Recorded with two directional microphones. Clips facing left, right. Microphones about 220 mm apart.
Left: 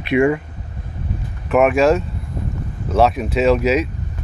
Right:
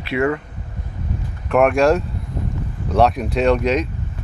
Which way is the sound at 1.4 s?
5° left (ahead or behind).